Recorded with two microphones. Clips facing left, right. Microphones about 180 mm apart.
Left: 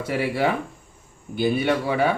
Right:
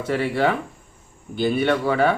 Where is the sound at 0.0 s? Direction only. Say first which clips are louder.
Right 2 dB; 10° left (ahead or behind).